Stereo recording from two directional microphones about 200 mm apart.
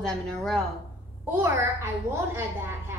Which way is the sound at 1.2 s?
10° right (ahead or behind).